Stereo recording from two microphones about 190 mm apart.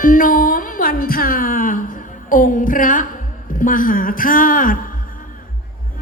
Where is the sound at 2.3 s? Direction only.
45° left (ahead or behind).